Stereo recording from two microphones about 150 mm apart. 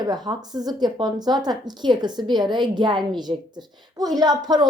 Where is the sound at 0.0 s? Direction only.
25° right (ahead or behind).